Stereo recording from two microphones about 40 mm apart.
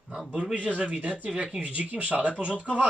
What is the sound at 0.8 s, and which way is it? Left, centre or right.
Speech, right.